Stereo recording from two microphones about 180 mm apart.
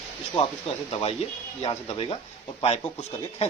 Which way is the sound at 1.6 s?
35° left (ahead or behind).